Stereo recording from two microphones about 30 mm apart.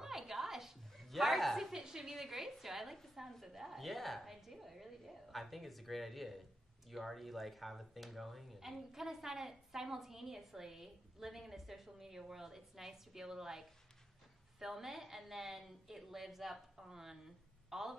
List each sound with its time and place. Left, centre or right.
0.0 s a sound: centre
1.0 s a woman's voice: centre
1.7 s a woman's voice: centre
2.1 s a woman's voice: centre